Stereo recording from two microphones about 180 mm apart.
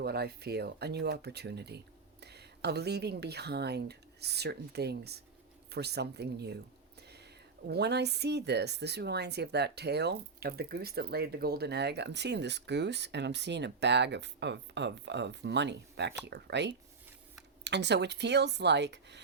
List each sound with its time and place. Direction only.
0.0 s speech: 60° right (ahead or behind)
7.7 s speech: 65° right (ahead or behind)